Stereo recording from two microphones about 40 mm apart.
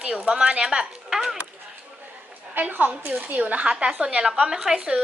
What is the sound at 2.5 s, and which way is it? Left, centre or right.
A woman's voice, right.